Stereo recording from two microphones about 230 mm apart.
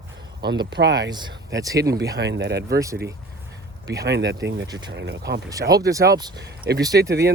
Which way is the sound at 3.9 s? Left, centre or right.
Right.